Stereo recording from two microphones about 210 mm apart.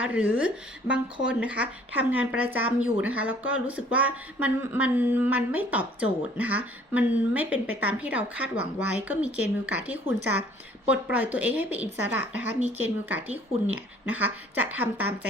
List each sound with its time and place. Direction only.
0.0 s speech: 5° right (ahead or behind)
12.5 s speech: 30° right (ahead or behind)
12.8 s speech: 10° right (ahead or behind)